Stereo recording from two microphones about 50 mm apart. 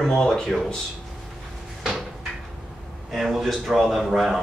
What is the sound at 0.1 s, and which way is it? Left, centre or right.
Speech, centre.